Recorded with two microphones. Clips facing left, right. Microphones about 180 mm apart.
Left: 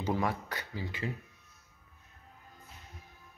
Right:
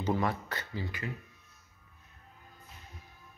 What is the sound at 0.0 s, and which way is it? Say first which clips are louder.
Speech: right 1 dB; 10° left (ahead or behind).